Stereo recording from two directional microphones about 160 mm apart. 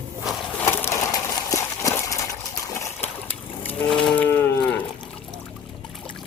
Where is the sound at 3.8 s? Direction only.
5° left (ahead or behind).